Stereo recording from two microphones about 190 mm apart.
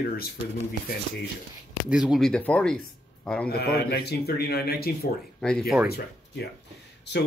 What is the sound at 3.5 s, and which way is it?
A man's voice, 55° left (ahead or behind).